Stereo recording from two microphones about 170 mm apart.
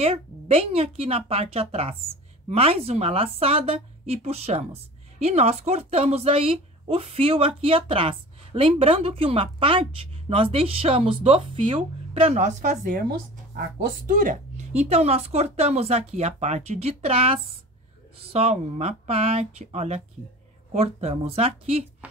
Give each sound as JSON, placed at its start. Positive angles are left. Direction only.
{"t": 0.0, "sound": "a woman's voice", "side_deg": -35}